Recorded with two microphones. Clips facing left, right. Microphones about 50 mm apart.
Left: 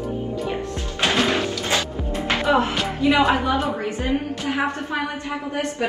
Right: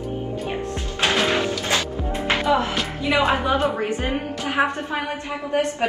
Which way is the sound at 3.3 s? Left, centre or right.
Right.